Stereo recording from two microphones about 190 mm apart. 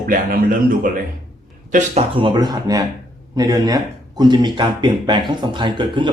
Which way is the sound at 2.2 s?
25° right (ahead or behind).